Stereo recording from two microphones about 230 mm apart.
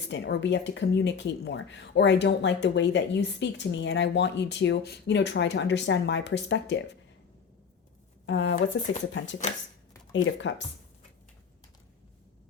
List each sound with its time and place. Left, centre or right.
0.1 s speech: left
8.3 s speech: left
10.4 s speech: left